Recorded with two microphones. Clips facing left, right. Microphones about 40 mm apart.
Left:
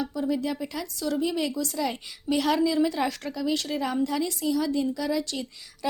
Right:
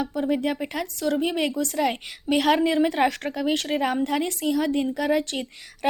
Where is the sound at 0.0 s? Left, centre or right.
Right.